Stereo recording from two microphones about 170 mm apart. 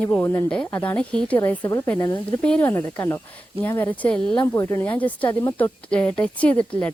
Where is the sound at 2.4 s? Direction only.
5° left (ahead or behind).